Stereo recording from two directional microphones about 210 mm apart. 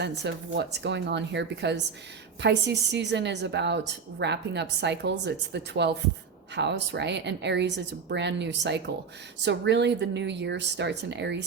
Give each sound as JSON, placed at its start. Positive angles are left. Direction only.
{"t": 0.0, "sound": "a woman's voice", "side_deg": -55}